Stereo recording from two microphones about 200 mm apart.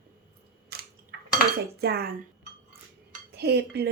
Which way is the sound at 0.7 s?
50° right (ahead or behind).